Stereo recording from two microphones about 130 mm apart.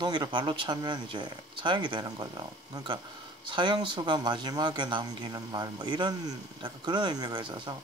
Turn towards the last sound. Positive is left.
turn(degrees=-35)  # may be behind; listen again after turning